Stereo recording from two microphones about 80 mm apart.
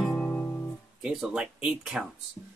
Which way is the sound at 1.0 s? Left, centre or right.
Centre.